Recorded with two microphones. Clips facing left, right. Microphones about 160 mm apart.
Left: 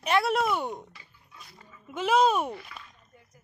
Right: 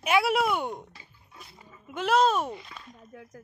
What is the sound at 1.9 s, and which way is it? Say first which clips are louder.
Speech: even; 5° left (ahead or behind).